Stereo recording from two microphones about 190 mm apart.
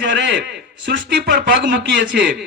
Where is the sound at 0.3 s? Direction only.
60° right (ahead or behind).